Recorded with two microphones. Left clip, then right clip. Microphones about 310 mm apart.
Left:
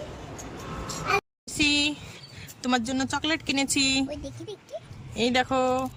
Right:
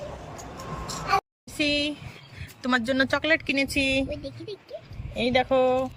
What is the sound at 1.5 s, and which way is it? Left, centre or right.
Speech, centre.